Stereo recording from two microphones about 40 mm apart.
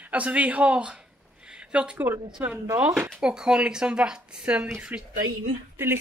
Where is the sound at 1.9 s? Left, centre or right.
Right.